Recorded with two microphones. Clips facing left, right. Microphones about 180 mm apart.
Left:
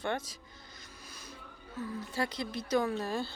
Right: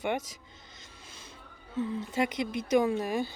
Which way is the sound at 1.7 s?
25° right (ahead or behind).